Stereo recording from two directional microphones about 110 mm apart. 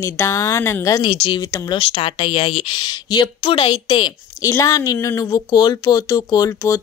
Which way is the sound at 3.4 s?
60° left (ahead or behind).